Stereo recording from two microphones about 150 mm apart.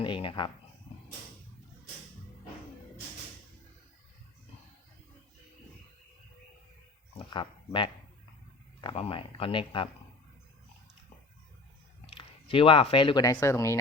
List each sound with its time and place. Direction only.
0.0 s speech: 35° left (ahead or behind)
7.2 s speech: 35° left (ahead or behind)
12.0 s speech: 35° left (ahead or behind)
13.2 s speech: 20° left (ahead or behind)